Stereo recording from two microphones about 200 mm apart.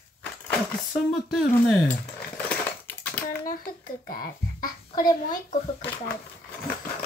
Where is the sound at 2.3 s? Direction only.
10° left (ahead or behind).